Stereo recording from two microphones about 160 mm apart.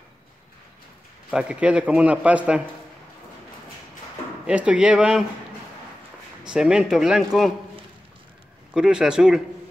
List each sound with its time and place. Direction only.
1.3 s a man's voice: 5° right (ahead or behind)
4.5 s speech: 5° right (ahead or behind)
6.4 s speech: 5° right (ahead or behind)
8.7 s speech: 5° right (ahead or behind)